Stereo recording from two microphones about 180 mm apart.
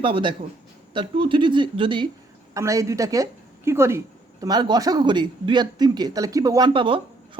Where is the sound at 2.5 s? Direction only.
15° right (ahead or behind).